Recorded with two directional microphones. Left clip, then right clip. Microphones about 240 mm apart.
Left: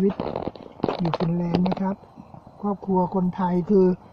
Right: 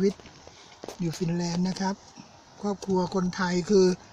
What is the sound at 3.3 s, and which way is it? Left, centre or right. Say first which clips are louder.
Speech: left 3 dB; centre.